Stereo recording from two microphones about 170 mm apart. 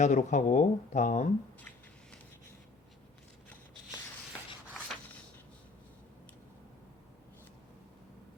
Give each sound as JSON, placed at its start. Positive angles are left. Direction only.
{"t": 0.0, "sound": "speech", "side_deg": 45}